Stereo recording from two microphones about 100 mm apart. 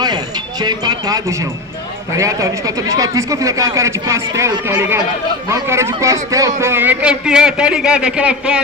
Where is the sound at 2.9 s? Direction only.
35° right (ahead or behind).